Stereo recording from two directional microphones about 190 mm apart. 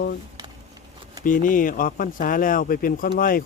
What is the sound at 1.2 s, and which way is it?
Speech, 45° left (ahead or behind).